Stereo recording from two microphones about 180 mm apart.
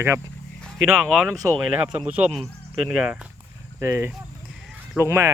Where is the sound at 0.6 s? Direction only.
Centre (ahead or behind).